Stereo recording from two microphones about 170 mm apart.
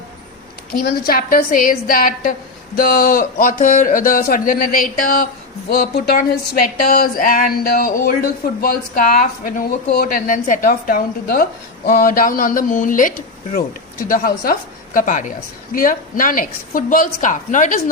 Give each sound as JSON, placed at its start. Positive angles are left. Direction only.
{"t": 0.7, "sound": "a woman's voice", "side_deg": 60}